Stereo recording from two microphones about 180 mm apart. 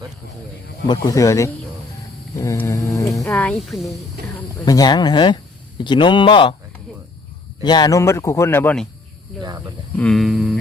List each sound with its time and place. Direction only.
0.9 s speech: 20° left (ahead or behind)
2.3 s mantra: 15° left (ahead or behind)
3.2 s speech: 10° left (ahead or behind)
4.6 s speech: 20° left (ahead or behind)
7.6 s speech: 25° left (ahead or behind); by 8.9 s 5° left (ahead or behind)
9.3 s a sound: centre (ahead or behind)